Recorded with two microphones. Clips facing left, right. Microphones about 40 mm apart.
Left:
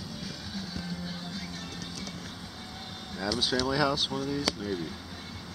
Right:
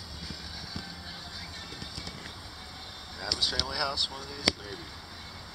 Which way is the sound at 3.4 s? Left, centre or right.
Centre.